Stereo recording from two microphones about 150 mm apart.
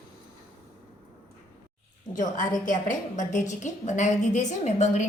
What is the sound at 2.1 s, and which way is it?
A woman's voice, 60° left (ahead or behind).